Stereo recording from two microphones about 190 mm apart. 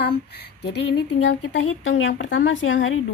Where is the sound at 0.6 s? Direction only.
65° left (ahead or behind).